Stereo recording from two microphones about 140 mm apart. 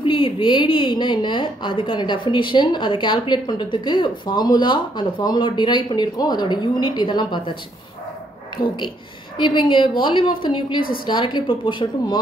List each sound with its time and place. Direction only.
0.0 s a woman's voice: 35° left (ahead or behind)
8.6 s a woman's voice: 35° left (ahead or behind)